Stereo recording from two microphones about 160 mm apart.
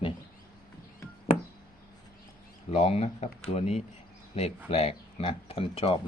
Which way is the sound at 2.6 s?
40° left (ahead or behind).